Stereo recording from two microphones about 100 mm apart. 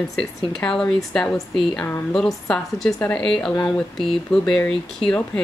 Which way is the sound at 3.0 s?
15° left (ahead or behind).